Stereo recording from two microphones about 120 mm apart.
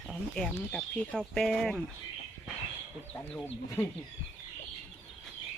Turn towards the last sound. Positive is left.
turn(degrees=10)  # may be behind; listen again after turning